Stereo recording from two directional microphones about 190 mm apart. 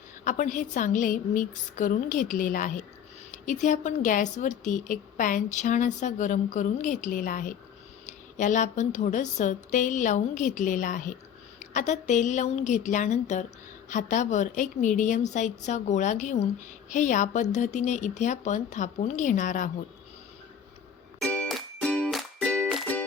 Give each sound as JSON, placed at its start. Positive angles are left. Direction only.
{"t": 0.3, "sound": "a woman's voice", "side_deg": 40}
{"t": 21.2, "sound": "music", "side_deg": 5}